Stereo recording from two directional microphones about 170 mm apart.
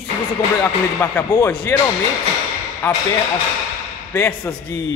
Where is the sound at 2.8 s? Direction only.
15° left (ahead or behind).